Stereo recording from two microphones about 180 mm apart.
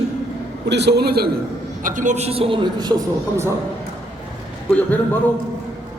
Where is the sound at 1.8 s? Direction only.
45° right (ahead or behind); by 2.9 s 30° right (ahead or behind).